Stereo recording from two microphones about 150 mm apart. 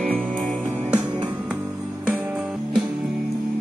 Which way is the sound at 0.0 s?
5° left (ahead or behind).